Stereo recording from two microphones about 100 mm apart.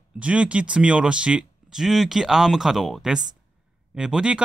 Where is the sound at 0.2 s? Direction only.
10° right (ahead or behind).